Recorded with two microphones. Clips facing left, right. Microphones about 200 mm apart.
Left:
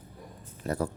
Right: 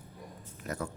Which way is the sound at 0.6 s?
35° left (ahead or behind).